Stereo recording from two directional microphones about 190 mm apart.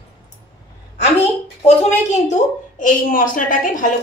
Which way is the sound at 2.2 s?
40° left (ahead or behind).